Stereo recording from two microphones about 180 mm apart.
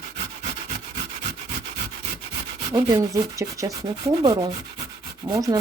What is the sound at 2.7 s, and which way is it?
Sanding, 25° right (ahead or behind).